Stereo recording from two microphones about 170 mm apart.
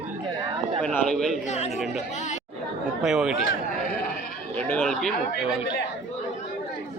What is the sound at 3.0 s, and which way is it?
Speech, centre (ahead or behind).